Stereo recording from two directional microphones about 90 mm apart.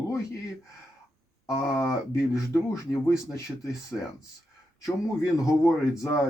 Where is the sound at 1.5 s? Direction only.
30° left (ahead or behind).